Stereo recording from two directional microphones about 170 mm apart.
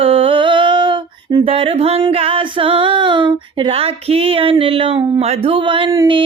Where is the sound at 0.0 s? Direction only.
30° right (ahead or behind).